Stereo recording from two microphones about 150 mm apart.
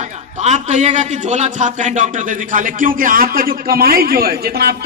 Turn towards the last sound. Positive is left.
turn(degrees=-90)